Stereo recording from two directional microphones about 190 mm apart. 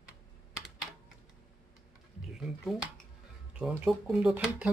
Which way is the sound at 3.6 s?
5° right (ahead or behind).